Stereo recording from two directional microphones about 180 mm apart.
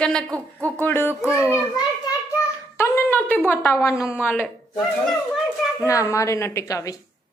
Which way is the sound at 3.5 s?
10° left (ahead or behind).